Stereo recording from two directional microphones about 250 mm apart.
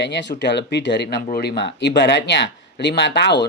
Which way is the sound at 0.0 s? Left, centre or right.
Left.